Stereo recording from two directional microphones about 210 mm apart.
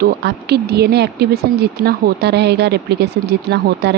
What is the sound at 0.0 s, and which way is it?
A woman's voice, 50° right (ahead or behind).